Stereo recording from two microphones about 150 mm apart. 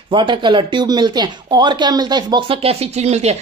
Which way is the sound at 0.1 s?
30° right (ahead or behind).